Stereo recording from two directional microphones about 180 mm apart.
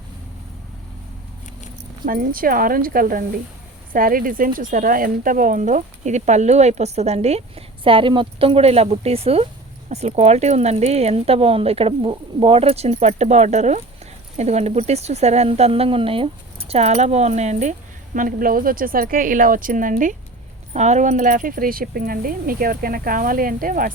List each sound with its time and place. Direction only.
2.0 s speech: 50° right (ahead or behind)